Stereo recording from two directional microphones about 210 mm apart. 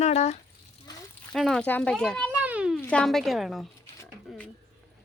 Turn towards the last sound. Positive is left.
turn(degrees=5)  # may be behind; listen again after turning